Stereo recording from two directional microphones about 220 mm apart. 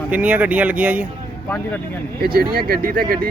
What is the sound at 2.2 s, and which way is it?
Speech, 45° right (ahead or behind).